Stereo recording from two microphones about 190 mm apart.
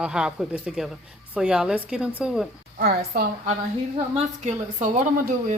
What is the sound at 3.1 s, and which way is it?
Speech, 55° right (ahead or behind).